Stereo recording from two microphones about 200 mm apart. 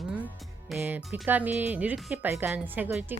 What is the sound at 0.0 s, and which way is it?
Music, 5° right (ahead or behind).